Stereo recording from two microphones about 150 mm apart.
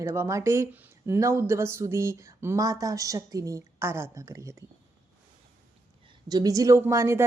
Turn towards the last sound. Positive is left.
turn(degrees=-20)  # may be behind; listen again after turning